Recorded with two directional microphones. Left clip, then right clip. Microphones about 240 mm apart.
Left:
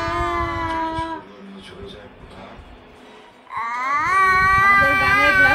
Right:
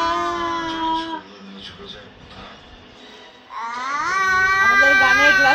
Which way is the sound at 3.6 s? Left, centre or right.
Centre.